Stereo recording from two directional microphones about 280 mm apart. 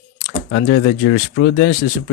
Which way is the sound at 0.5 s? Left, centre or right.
Left.